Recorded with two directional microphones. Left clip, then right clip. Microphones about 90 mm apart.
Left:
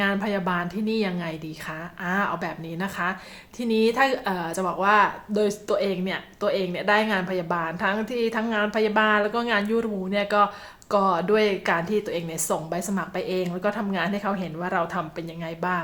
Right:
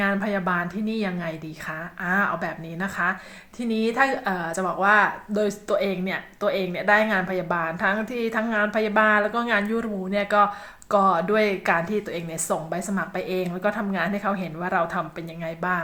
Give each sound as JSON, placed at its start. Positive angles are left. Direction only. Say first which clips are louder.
{"t": 0.0, "sound": "speech", "louder": "right 1 dB", "side_deg": 20}